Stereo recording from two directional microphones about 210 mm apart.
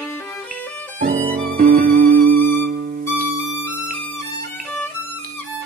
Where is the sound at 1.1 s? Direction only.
40° right (ahead or behind).